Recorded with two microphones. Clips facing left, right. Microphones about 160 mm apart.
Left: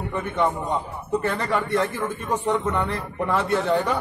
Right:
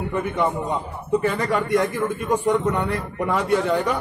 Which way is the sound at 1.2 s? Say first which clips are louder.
Right 2 dB; 10° right (ahead or behind).